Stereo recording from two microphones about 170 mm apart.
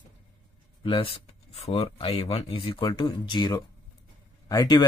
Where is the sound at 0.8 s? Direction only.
30° left (ahead or behind).